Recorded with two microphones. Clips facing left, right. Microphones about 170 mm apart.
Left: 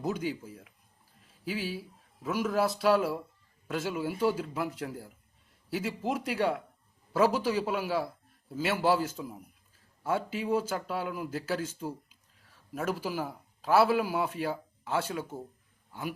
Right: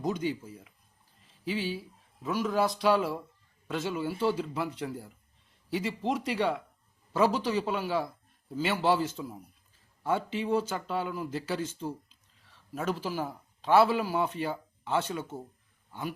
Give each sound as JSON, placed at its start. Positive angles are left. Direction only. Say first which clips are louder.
{"t": 0.0, "sound": "a man's voice", "louder": "right 1 dB", "side_deg": 5}